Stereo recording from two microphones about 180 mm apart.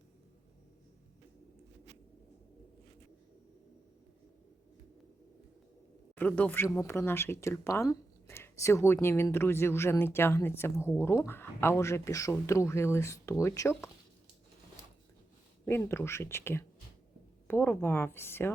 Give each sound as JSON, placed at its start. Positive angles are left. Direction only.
{"t": 6.1, "sound": "speech", "side_deg": 10}
{"t": 15.6, "sound": "speech", "side_deg": 15}